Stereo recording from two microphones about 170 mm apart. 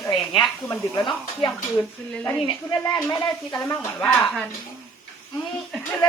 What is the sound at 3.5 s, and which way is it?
Speech, 10° left (ahead or behind).